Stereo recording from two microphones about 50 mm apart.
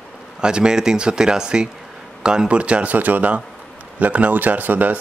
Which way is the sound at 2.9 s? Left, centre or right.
Right.